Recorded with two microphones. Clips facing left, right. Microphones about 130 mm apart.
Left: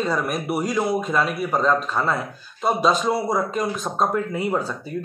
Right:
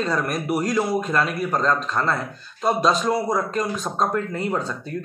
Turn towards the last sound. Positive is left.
turn(degrees=5)  # may be behind; listen again after turning